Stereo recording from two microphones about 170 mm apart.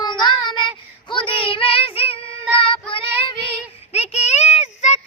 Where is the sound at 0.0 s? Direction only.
25° left (ahead or behind).